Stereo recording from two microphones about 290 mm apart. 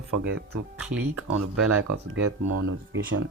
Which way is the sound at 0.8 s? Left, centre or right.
Centre.